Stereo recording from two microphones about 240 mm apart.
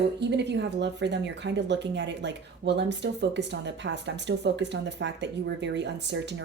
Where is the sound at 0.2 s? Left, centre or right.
Right.